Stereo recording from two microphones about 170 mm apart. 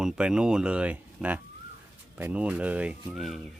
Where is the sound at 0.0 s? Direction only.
5° right (ahead or behind).